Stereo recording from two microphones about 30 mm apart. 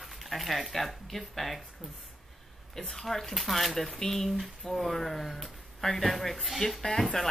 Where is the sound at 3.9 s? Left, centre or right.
Centre.